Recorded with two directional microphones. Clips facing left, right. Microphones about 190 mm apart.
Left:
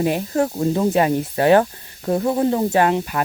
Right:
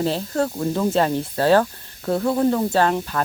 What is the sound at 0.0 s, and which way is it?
Speech, 15° left (ahead or behind).